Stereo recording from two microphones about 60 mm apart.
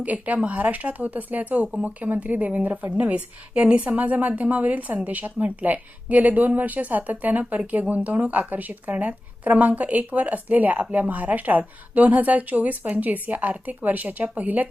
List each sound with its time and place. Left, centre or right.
0.0 s a woman's voice: right